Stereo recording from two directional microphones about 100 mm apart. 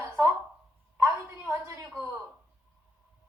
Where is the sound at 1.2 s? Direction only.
30° right (ahead or behind).